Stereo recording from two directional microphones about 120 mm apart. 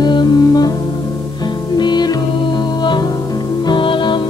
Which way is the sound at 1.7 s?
35° left (ahead or behind).